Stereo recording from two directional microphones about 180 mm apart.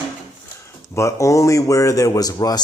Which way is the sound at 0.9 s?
15° left (ahead or behind).